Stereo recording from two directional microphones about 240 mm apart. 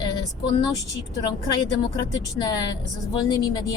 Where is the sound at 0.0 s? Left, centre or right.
Centre.